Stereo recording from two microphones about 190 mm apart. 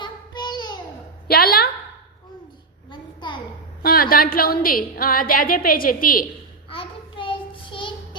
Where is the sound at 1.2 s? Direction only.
55° left (ahead or behind).